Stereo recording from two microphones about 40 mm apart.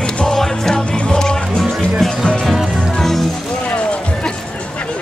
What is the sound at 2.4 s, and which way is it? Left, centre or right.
Music, centre.